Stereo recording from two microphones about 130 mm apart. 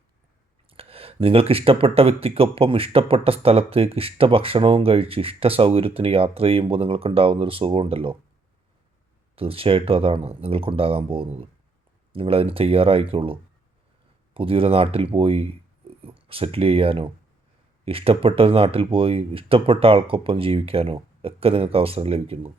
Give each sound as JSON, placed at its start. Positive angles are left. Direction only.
{"t": 0.7, "sound": "speech", "side_deg": -50}
{"t": 9.3, "sound": "speech", "side_deg": -45}